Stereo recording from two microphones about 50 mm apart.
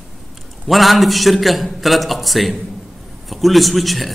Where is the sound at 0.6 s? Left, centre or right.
Centre.